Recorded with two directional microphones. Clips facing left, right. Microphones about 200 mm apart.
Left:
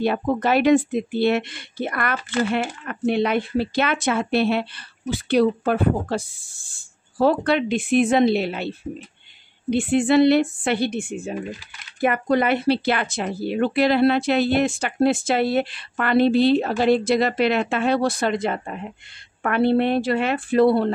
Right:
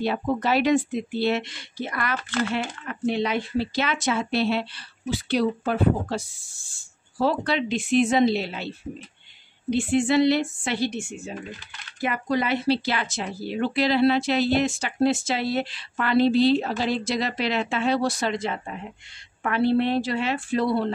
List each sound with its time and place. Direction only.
0.0 s speech: 55° left (ahead or behind)
9.7 s speech: 55° left (ahead or behind)